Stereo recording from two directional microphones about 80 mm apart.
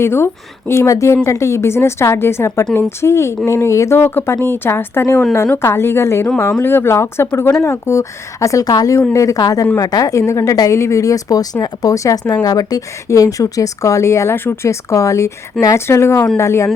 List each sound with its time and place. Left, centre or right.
0.0 s a woman's voice: left
15.6 s speech: centre
15.9 s speech: left